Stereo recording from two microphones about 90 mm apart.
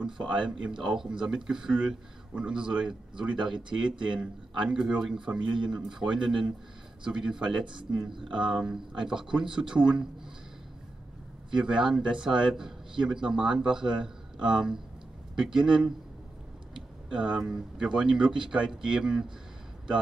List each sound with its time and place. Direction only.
0.0 s speech: 10° right (ahead or behind)
11.5 s speech: 10° right (ahead or behind)
17.1 s speech: 10° right (ahead or behind)